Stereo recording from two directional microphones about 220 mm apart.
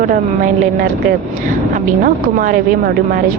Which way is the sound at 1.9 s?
40° right (ahead or behind).